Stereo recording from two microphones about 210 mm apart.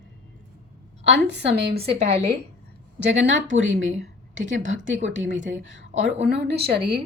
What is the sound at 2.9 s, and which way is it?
Speech, 55° right (ahead or behind).